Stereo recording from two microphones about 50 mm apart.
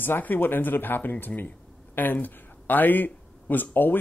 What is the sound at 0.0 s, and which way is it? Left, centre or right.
A man's voice, left.